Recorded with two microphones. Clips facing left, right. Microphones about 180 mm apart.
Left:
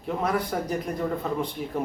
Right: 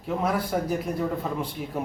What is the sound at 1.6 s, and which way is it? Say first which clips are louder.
Speech: left 1 dB; 5° right (ahead or behind).